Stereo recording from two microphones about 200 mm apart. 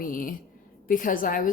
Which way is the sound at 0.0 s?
45° left (ahead or behind).